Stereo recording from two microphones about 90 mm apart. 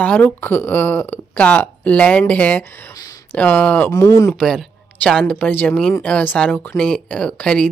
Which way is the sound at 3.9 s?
35° left (ahead or behind).